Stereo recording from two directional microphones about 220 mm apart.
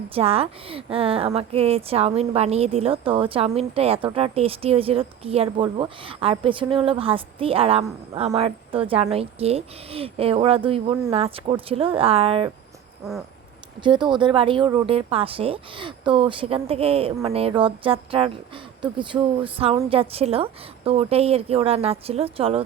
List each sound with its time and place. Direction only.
0.1 s speech: 25° right (ahead or behind)
13.8 s speech: 20° right (ahead or behind)